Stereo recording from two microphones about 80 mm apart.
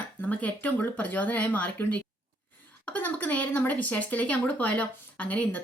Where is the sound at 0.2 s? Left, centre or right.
Centre.